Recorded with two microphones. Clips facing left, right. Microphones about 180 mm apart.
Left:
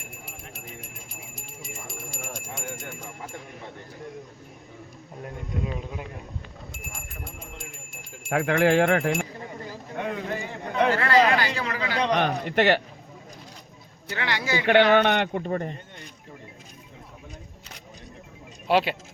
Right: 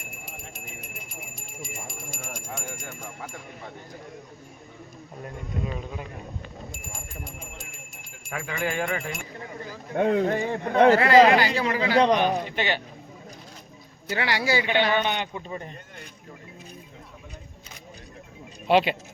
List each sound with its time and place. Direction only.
1.9 s alarm clock: 25° left (ahead or behind)
8.3 s a man's voice: 75° left (ahead or behind)
10.0 s speech: 45° right (ahead or behind)
10.9 s speech: 15° right (ahead or behind)
11.9 s a man's voice: 40° right (ahead or behind)
12.1 s a man's voice: 70° left (ahead or behind)
14.1 s speech: 10° right (ahead or behind)
14.7 s a man's voice: 70° left (ahead or behind)
18.7 s speech: 5° left (ahead or behind)